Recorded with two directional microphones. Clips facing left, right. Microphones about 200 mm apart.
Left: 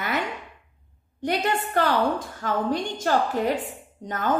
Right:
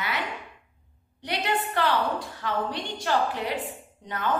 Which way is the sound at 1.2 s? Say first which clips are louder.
Left 4 dB; 45° left (ahead or behind).